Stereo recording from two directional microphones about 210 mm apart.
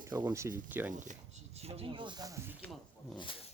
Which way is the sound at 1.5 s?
30° right (ahead or behind).